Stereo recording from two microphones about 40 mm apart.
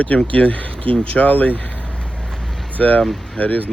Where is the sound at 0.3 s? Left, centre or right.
Left.